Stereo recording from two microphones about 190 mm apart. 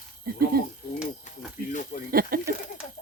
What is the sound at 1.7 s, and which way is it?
Speech, 40° left (ahead or behind).